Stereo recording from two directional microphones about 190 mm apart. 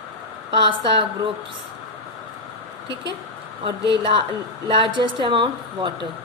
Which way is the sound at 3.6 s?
25° right (ahead or behind).